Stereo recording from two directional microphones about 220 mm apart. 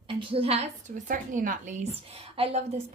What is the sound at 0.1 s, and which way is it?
A woman's voice, 25° right (ahead or behind).